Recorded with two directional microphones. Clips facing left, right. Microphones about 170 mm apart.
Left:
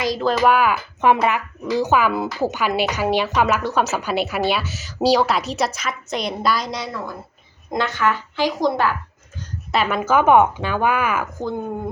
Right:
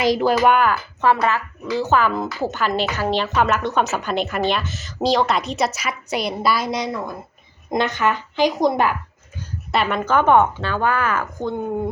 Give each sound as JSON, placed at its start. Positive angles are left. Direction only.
{"t": 0.0, "sound": "speech", "side_deg": -20}
{"t": 0.3, "sound": "speech", "side_deg": 0}
{"t": 0.7, "sound": "speech", "side_deg": 15}
{"t": 7.7, "sound": "speech", "side_deg": -20}
{"t": 9.4, "sound": "speech", "side_deg": 0}